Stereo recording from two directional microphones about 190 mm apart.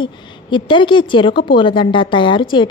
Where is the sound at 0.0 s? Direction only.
25° left (ahead or behind).